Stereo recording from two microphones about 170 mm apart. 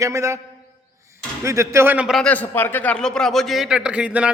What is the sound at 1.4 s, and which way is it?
A man's voice, 15° right (ahead or behind).